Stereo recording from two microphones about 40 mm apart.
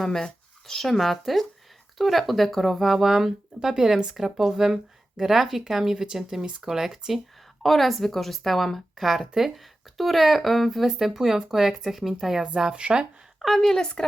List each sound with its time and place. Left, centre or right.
0.0 s speech: centre
7.6 s speech: centre
10.8 s speech: centre
12.5 s speech: right
13.6 s speech: centre